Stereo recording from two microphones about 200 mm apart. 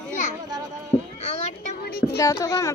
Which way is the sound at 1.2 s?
30° left (ahead or behind).